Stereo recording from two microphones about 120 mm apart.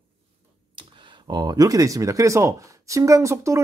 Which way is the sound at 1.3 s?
35° right (ahead or behind).